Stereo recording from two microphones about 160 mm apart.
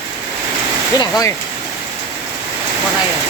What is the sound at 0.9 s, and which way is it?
Speech, 25° left (ahead or behind).